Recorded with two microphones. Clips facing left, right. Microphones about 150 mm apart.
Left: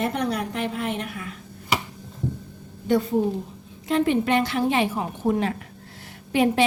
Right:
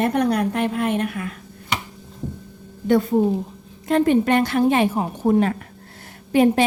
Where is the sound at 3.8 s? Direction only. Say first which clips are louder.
Right 4 dB; 45° right (ahead or behind).